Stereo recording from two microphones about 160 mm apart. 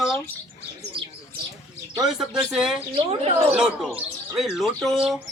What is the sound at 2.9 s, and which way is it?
Speech, 35° right (ahead or behind).